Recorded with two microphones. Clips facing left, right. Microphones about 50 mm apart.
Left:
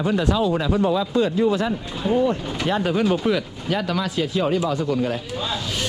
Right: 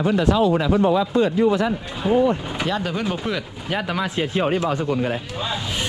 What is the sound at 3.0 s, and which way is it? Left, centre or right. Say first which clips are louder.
Speech: left 5 dB; centre.